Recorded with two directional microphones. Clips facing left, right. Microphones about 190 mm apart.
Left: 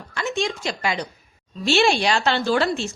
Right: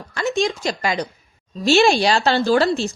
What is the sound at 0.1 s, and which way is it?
A woman's voice, 40° right (ahead or behind).